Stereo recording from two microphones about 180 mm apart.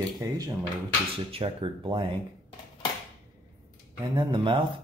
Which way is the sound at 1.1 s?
30° right (ahead or behind).